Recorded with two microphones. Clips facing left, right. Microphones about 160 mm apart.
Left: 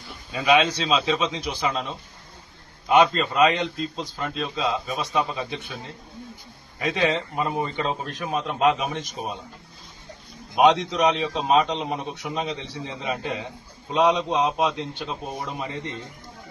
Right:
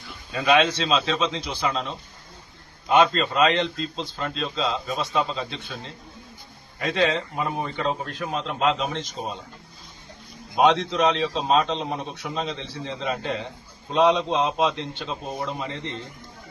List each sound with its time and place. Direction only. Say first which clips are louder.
0.3 s a man's voice: even; 10° left (ahead or behind)
6.8 s a man's voice: even; 15° left (ahead or behind)
7.4 s speech: left 2 dB; centre (ahead or behind)
8.1 s a man's voice: left 1 dB; 15° left (ahead or behind)
10.5 s a man's voice: left 1 dB; 15° left (ahead or behind)